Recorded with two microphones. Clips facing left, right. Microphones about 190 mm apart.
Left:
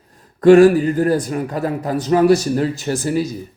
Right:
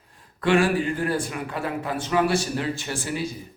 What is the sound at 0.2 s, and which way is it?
A man's voice, 40° left (ahead or behind).